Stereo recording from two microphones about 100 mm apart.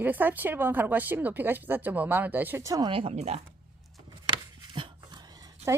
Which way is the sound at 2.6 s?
35° right (ahead or behind).